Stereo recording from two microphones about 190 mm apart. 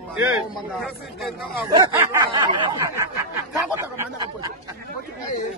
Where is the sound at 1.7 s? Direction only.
15° right (ahead or behind).